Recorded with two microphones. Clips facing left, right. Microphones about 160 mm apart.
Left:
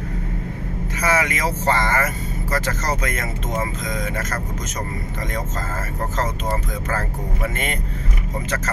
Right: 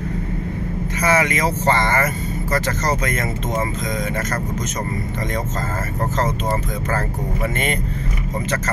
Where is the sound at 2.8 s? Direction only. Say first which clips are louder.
Right 3 dB; 5° left (ahead or behind).